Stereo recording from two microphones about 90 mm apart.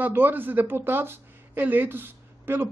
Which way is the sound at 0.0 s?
20° right (ahead or behind).